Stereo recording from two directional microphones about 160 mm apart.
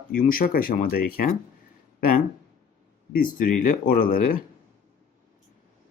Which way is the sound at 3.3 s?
60° left (ahead or behind).